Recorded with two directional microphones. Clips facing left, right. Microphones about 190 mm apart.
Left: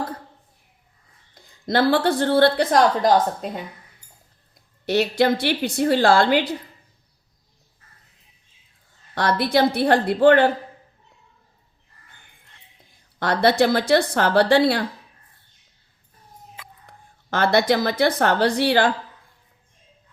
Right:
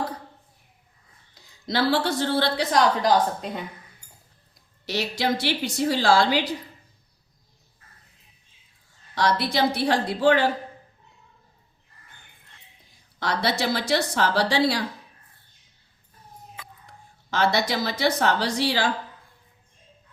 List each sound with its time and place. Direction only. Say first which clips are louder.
1.4 s a woman's voice: left 5 dB; 50° left (ahead or behind)
4.9 s speech: left 7 dB; 55° left (ahead or behind)
9.1 s speech: left 4 dB; 55° left (ahead or behind)
13.1 s speech: left 8 dB; 55° left (ahead or behind)
16.8 s a woman's voice: even; 55° left (ahead or behind)